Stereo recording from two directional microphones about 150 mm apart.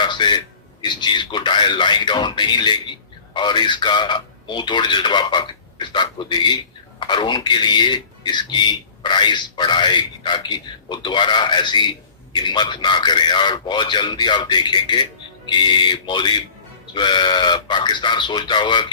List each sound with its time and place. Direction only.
0.0 s a man's voice: 30° left (ahead or behind)